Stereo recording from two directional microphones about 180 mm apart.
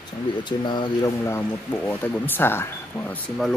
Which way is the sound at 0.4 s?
25° left (ahead or behind).